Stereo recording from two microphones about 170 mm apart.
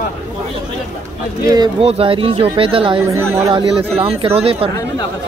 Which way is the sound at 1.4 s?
20° right (ahead or behind).